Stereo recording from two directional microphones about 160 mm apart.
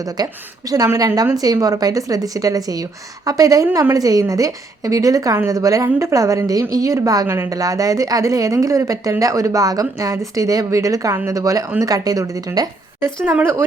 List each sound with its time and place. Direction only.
0.0 s a woman's voice: 25° right (ahead or behind)
13.2 s speech: 10° right (ahead or behind)